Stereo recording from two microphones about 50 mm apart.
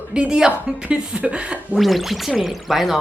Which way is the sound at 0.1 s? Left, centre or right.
Centre.